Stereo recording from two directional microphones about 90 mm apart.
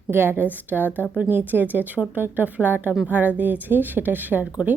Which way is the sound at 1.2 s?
20° right (ahead or behind).